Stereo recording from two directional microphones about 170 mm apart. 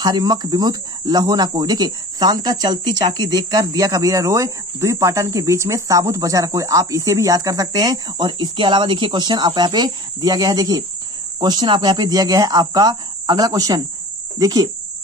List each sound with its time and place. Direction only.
0.0 s speech: 25° right (ahead or behind)